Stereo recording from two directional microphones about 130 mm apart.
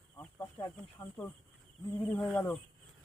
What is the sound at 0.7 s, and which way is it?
Speech, 20° left (ahead or behind).